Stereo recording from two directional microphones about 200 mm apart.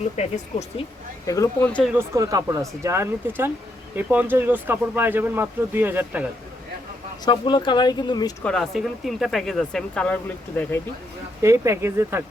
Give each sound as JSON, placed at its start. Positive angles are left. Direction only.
{"t": 0.2, "sound": "speech", "side_deg": 35}
{"t": 1.3, "sound": "speech", "side_deg": 15}
{"t": 1.7, "sound": "speech", "side_deg": 0}
{"t": 2.0, "sound": "speech", "side_deg": -15}
{"t": 7.3, "sound": "speech", "side_deg": 20}
{"t": 8.4, "sound": "speech", "side_deg": 0}
{"t": 11.4, "sound": "speech", "side_deg": -15}